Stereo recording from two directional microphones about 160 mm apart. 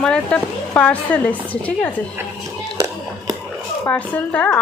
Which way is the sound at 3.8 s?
10° left (ahead or behind).